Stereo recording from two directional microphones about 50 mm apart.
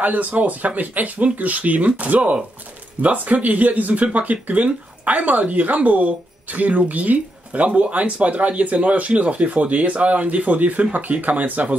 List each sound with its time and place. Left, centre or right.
0.0 s speech: right